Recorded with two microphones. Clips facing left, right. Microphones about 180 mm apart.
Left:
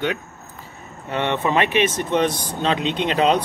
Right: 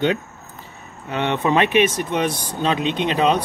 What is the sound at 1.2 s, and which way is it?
Speech, 15° right (ahead or behind).